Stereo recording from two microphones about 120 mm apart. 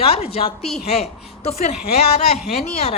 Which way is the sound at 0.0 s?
55° left (ahead or behind).